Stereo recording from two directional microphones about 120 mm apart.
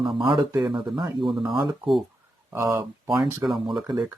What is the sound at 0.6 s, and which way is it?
Speech, 35° right (ahead or behind).